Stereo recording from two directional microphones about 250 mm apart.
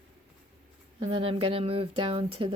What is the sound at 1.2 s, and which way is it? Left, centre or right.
Speech, right.